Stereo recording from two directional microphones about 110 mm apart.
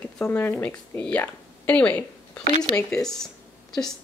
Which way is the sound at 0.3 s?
20° left (ahead or behind).